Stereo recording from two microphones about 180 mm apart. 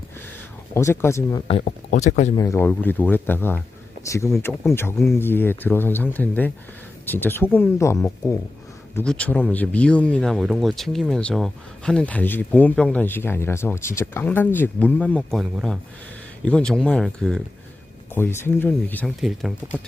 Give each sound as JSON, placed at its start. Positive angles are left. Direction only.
{"t": 0.7, "sound": "speech", "side_deg": 15}
{"t": 1.6, "sound": "speech", "side_deg": 45}
{"t": 2.3, "sound": "speech", "side_deg": 15}
{"t": 18.1, "sound": "speech", "side_deg": 10}
{"t": 19.2, "sound": "speech", "side_deg": 0}